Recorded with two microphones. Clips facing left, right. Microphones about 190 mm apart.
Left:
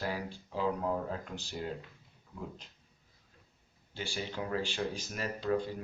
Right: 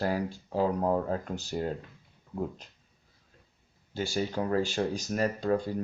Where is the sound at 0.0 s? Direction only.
45° right (ahead or behind).